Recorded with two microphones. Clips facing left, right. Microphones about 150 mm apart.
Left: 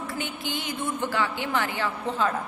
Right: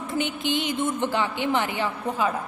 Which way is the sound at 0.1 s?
20° right (ahead or behind).